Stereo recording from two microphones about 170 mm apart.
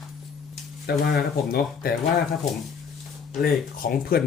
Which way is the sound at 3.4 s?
55° left (ahead or behind).